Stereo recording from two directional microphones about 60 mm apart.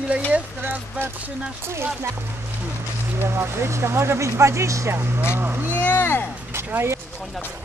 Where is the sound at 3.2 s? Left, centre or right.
Right.